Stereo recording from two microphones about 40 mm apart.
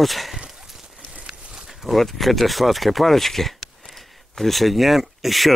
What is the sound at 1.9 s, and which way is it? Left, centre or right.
Speech, centre.